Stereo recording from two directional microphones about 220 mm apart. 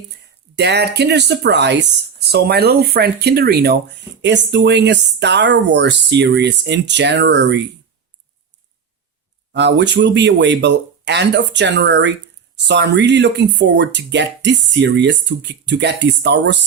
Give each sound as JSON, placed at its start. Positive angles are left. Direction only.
{"t": 0.5, "sound": "speech", "side_deg": -50}
{"t": 9.5, "sound": "speech", "side_deg": -50}